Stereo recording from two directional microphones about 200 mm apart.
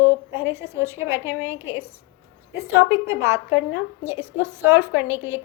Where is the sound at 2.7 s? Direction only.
10° right (ahead or behind).